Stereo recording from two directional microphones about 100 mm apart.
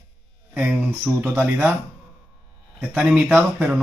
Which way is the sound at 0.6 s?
10° right (ahead or behind).